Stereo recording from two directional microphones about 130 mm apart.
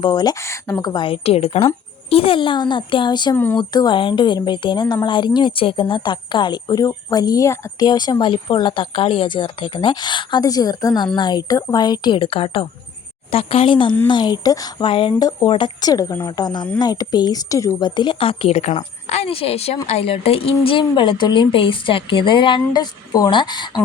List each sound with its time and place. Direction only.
0.0 s speech: 35° left (ahead or behind)
3.3 s speech: 15° left (ahead or behind)
3.6 s a woman's voice: 35° left (ahead or behind)
14.8 s a woman's voice: 40° left (ahead or behind)